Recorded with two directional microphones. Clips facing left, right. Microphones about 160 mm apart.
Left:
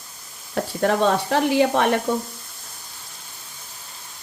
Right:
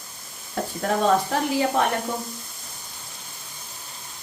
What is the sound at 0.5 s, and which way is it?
Speech, 85° left.